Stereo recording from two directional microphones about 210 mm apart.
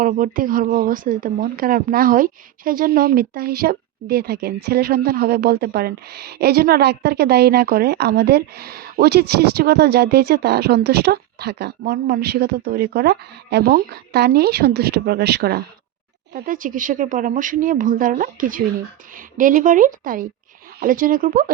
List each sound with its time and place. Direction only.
0.0 s speech: 40° right (ahead or behind)